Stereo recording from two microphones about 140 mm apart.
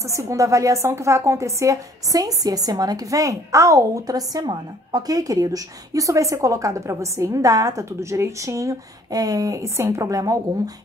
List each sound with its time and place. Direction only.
0.0 s a woman's voice: 20° right (ahead or behind)